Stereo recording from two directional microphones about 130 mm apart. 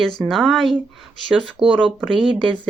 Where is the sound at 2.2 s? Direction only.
40° right (ahead or behind).